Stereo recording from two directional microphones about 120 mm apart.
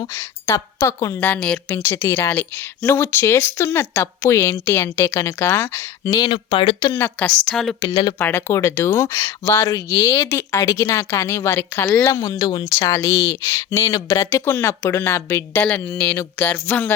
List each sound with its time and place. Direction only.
0.1 s speech: 20° left (ahead or behind)
1.2 s a woman's voice: 10° left (ahead or behind)
6.1 s speech: 45° left (ahead or behind)
6.9 s a woman's voice: 15° left (ahead or behind)
7.4 s a woman's voice: 5° left (ahead or behind)
8.2 s speech: 20° left (ahead or behind)